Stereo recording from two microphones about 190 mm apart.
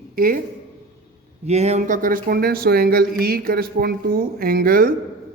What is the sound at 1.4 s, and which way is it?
Speech, 35° right (ahead or behind).